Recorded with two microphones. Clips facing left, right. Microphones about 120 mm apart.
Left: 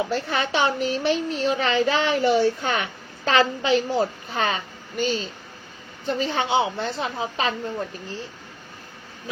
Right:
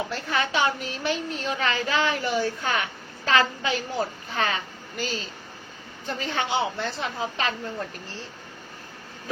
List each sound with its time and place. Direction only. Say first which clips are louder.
0.1 s a child's voice: left 3 dB; 30° left (ahead or behind)